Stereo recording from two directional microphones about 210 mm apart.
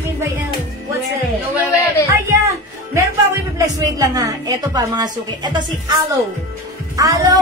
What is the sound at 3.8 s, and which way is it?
A woman's voice, 15° right (ahead or behind).